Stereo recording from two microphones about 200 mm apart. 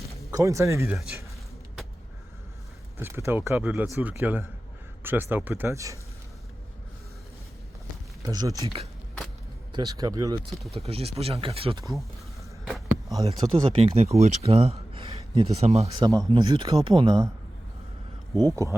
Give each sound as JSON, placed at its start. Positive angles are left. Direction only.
{"t": 0.3, "sound": "speech", "side_deg": -15}
{"t": 3.0, "sound": "speech", "side_deg": -15}
{"t": 8.2, "sound": "speech", "side_deg": -20}
{"t": 9.7, "sound": "speech", "side_deg": -20}
{"t": 10.8, "sound": "speech", "side_deg": -30}
{"t": 12.6, "sound": "a sound", "side_deg": 0}
{"t": 13.4, "sound": "speech", "side_deg": -30}
{"t": 16.0, "sound": "speech", "side_deg": -20}
{"t": 18.4, "sound": "speech", "side_deg": -15}